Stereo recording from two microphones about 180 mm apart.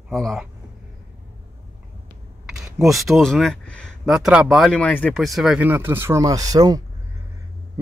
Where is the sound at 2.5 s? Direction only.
Centre (ahead or behind); by 6.8 s 20° right (ahead or behind).